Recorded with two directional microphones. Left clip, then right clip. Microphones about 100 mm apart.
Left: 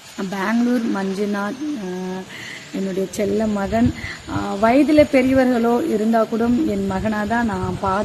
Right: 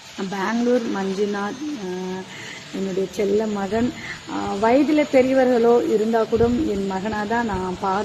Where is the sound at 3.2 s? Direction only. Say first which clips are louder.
Even; 30° left (ahead or behind).